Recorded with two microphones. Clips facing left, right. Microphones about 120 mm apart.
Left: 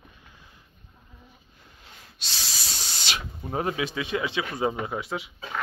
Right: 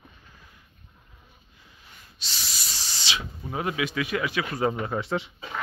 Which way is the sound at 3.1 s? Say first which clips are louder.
Right 1 dB; 50° left (ahead or behind).